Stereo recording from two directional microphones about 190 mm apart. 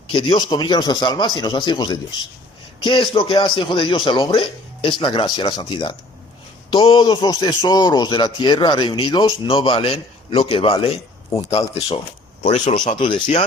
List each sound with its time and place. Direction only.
0.1 s a man's voice: 25° left (ahead or behind)
12.4 s speech: 40° left (ahead or behind)
13.0 s a man's voice: 25° left (ahead or behind)